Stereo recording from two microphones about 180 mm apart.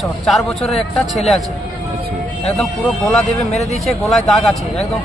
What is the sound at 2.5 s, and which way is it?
Speech, centre (ahead or behind).